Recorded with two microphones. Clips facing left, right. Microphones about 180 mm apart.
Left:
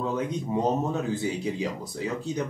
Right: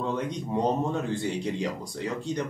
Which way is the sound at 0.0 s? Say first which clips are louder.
Left 1 dB; 5° left (ahead or behind).